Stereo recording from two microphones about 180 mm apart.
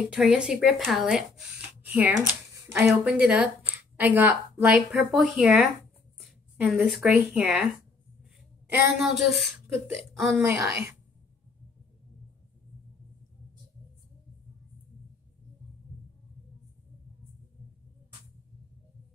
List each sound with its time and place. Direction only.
0.1 s a woman's voice: 5° right (ahead or behind)
8.2 s a sound: 5° right (ahead or behind)
10.1 s speech: centre (ahead or behind)
10.4 s speech: 15° right (ahead or behind)